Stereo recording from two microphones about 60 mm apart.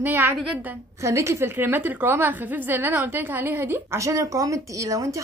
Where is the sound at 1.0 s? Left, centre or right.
Right.